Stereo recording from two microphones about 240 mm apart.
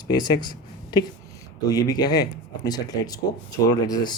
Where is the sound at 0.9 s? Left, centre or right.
Centre.